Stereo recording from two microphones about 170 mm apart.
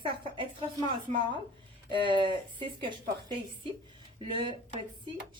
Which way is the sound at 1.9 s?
30° right (ahead or behind).